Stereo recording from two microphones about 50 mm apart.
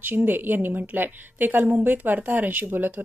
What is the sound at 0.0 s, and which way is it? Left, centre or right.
Speech, right.